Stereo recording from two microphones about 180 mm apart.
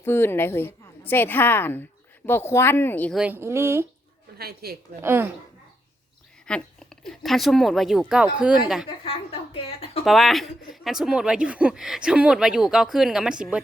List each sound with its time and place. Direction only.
0.0 s a woman's voice: 15° left (ahead or behind)
3.2 s speech: 10° right (ahead or behind)
4.4 s a woman's voice: 60° right (ahead or behind)
5.0 s speech: 10° right (ahead or behind)
6.4 s speech: 5° left (ahead or behind)
9.0 s a woman's voice: 30° left (ahead or behind)
10.0 s speech: centre (ahead or behind)